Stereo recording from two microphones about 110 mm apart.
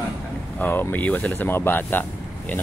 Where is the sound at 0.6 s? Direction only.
15° left (ahead or behind).